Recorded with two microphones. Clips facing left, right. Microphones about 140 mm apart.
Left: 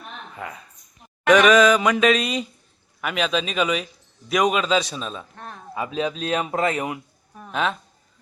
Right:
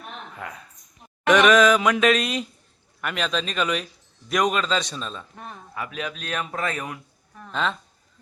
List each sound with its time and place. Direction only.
0.3 s speech: centre (ahead or behind)
1.3 s mantra: centre (ahead or behind)
5.7 s speech: 25° left (ahead or behind)
7.4 s speech: 10° left (ahead or behind)